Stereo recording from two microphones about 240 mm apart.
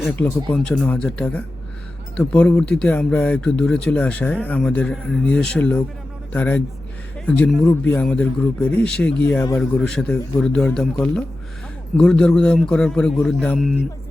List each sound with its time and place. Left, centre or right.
0.0 s speech: centre